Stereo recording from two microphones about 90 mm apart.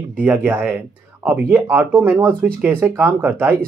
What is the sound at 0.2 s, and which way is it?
Speech, 20° right (ahead or behind).